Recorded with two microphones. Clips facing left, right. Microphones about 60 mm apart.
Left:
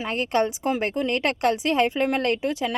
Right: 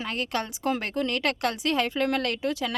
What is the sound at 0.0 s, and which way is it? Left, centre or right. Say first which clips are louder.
Speech: left 7 dB; left.